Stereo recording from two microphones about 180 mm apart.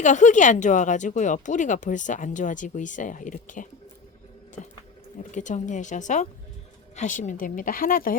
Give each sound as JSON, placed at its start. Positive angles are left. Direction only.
{"t": 0.0, "sound": "speech", "side_deg": 40}
{"t": 5.3, "sound": "speech", "side_deg": 45}